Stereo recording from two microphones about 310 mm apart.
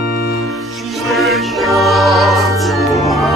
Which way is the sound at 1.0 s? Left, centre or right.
Centre.